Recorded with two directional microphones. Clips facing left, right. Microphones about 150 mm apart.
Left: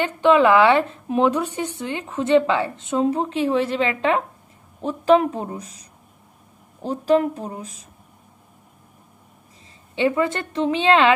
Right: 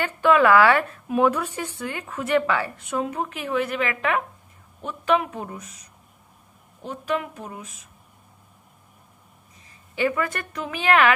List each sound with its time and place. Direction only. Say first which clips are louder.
0.0 s a woman's voice: left 3 dB; 20° left (ahead or behind)
9.9 s a woman's voice: left 4 dB; 25° left (ahead or behind)